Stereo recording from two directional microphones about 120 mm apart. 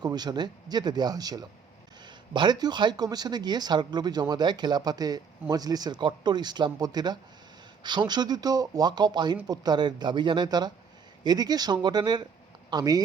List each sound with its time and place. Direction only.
0.0 s speech: 35° right (ahead or behind)